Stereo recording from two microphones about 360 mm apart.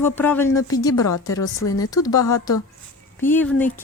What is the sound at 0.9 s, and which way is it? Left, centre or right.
Speech, left.